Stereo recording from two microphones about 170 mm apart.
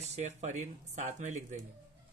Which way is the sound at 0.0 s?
40° right (ahead or behind).